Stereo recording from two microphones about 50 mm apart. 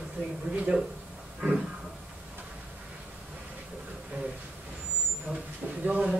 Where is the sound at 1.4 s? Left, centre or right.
Centre.